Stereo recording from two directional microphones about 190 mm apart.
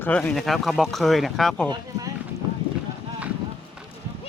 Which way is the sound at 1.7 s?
20° right (ahead or behind).